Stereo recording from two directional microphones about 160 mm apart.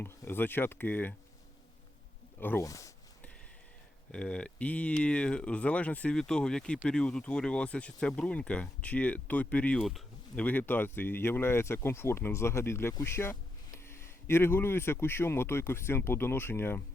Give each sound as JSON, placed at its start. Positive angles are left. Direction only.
{"t": 0.0, "sound": "speech", "side_deg": 15}
{"t": 2.4, "sound": "speech", "side_deg": 15}
{"t": 4.1, "sound": "speech", "side_deg": 5}